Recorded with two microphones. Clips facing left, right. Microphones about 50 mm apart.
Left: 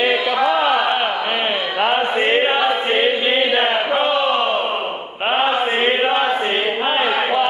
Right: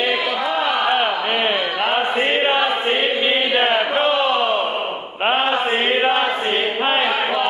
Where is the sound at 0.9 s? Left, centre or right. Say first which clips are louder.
Right 1 dB; centre.